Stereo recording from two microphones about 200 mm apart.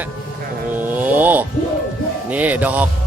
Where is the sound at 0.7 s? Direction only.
10° right (ahead or behind).